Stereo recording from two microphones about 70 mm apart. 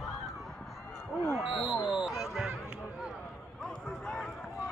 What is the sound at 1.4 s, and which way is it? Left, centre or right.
Speech, centre.